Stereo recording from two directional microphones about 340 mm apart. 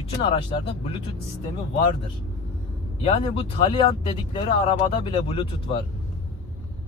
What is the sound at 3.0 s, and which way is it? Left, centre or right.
Speech, centre.